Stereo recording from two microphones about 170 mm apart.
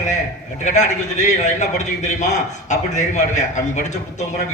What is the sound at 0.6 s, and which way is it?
A man's voice, 45° left (ahead or behind).